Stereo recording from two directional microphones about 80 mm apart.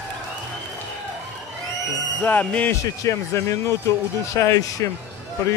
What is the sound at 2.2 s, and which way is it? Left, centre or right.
Speech, centre.